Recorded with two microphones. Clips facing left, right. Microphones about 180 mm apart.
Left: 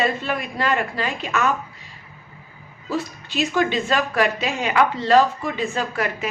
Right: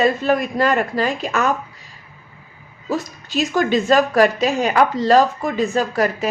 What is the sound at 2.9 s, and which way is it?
A woman's voice, 40° right (ahead or behind).